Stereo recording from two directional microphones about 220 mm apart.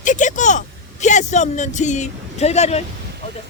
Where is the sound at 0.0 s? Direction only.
35° left (ahead or behind).